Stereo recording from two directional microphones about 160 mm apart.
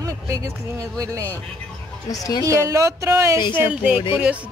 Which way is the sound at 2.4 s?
20° right (ahead or behind).